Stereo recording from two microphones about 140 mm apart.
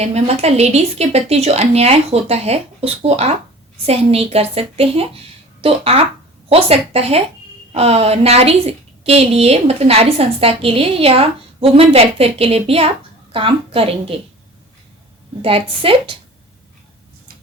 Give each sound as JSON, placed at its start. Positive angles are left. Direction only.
{"t": 0.0, "sound": "a woman's voice", "side_deg": -50}
{"t": 15.4, "sound": "a woman's voice", "side_deg": -40}